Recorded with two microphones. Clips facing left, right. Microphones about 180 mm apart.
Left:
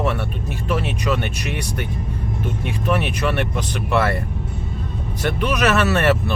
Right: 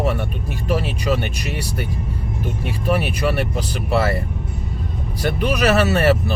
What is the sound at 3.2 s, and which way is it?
Speech, 35° right (ahead or behind).